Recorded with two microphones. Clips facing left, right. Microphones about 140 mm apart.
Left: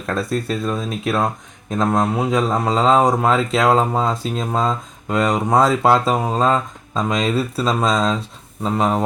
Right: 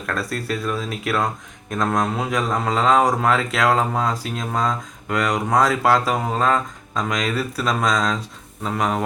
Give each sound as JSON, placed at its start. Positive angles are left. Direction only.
{"t": 0.0, "sound": "speech", "side_deg": 20}